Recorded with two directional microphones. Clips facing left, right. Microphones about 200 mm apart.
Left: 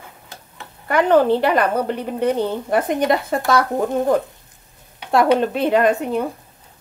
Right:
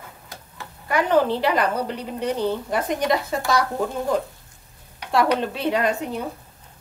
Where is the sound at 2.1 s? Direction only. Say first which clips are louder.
Left 3 dB; 55° left (ahead or behind).